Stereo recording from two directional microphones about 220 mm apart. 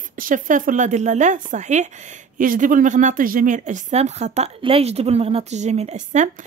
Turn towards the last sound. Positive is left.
turn(degrees=-30)  # may be behind; listen again after turning